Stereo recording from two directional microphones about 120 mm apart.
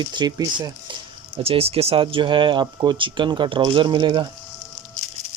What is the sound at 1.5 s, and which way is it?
Speech, 55° right (ahead or behind).